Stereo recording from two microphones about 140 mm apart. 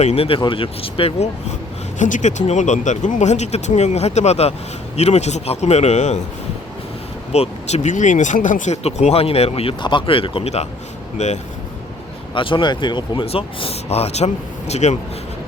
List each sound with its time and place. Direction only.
0.0 s speech: 45° left (ahead or behind)
2.0 s speech: 65° left (ahead or behind)
7.3 s speech: 55° left (ahead or behind)
12.3 s speech: 35° left (ahead or behind); by 14.9 s 55° left (ahead or behind)